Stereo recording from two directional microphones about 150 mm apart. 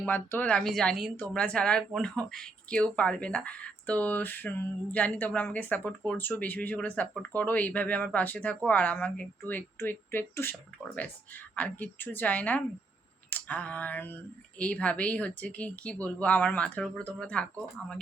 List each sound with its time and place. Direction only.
0.0 s speech: 15° left (ahead or behind)